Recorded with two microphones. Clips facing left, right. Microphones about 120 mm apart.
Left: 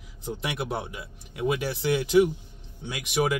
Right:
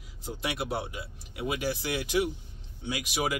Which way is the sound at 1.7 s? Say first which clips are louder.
Left 7 dB; 25° left (ahead or behind).